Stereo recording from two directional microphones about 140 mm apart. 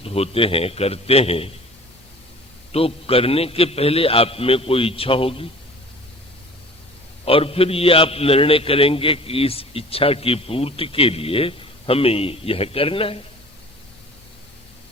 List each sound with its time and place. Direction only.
0.0 s a man's voice: 45° left (ahead or behind)
2.7 s a man's voice: 45° left (ahead or behind)
7.3 s a man's voice: 40° left (ahead or behind)